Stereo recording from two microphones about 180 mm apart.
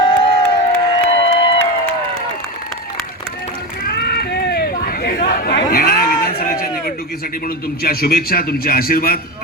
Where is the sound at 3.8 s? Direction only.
60° left (ahead or behind).